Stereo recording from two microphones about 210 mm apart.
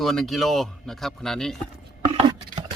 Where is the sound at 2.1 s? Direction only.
25° right (ahead or behind).